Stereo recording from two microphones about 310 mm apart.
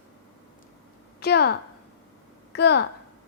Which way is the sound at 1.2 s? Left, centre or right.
Left.